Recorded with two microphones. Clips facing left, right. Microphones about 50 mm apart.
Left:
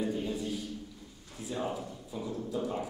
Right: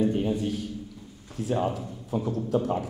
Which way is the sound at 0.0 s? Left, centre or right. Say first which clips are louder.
Right 8 dB; right.